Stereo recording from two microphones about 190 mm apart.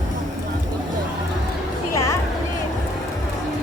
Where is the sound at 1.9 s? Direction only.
15° left (ahead or behind).